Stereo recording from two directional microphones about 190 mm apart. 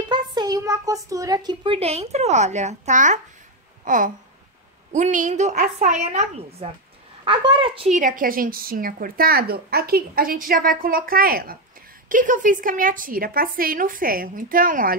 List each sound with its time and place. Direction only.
0.1 s a child's voice: 20° right (ahead or behind)
8.0 s a woman's voice: 50° right (ahead or behind)